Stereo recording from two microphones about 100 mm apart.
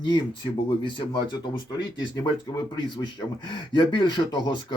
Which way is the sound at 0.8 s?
55° left (ahead or behind).